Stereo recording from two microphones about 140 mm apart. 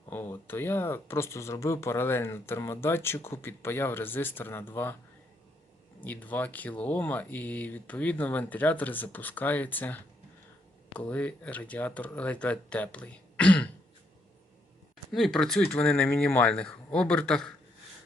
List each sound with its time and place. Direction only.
0.1 s speech: 15° left (ahead or behind)
6.0 s speech: 10° left (ahead or behind)
15.1 s speech: centre (ahead or behind)